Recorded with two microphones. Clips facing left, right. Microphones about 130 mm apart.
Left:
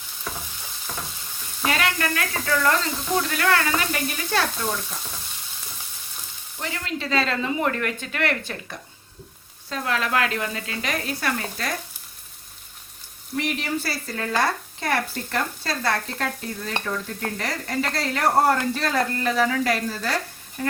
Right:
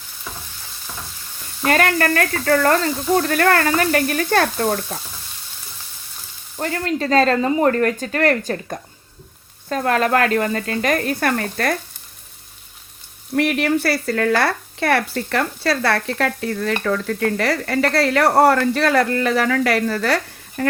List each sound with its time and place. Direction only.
1.6 s speech: 50° right (ahead or behind)
6.6 s speech: 50° right (ahead or behind)
13.3 s speech: 60° right (ahead or behind)
16.8 s stir: 85° right
17.3 s speech: 70° right (ahead or behind)